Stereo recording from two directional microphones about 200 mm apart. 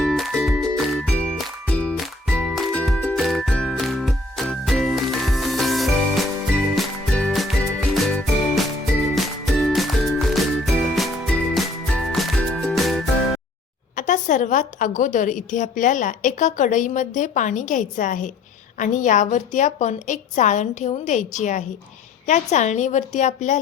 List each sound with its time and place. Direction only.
0.0 s music: centre (ahead or behind)
13.9 s a woman's voice: 40° left (ahead or behind)